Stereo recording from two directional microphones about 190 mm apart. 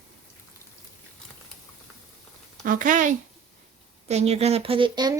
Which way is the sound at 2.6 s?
45° right (ahead or behind).